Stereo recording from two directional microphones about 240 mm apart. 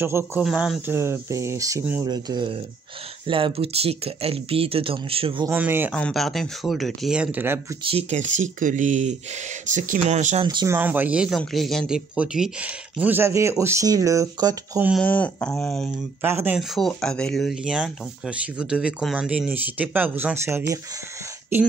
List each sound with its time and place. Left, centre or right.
0.0 s speech: centre
5.5 s speech: centre
7.8 s speech: right
14.9 s speech: centre
16.3 s speech: centre